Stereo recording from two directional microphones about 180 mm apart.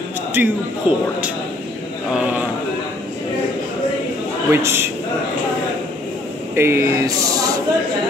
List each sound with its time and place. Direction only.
0.4 s speech: 10° right (ahead or behind)
2.1 s speech: 5° right (ahead or behind)
4.5 s a man's voice: 15° right (ahead or behind)
6.5 s a sound: 15° right (ahead or behind)